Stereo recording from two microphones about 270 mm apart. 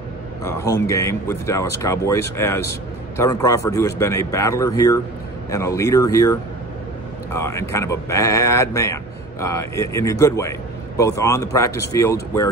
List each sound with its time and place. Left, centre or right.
0.4 s speech: centre
7.3 s speech: centre